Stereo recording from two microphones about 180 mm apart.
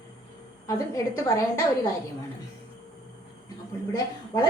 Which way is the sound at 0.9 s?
20° left (ahead or behind).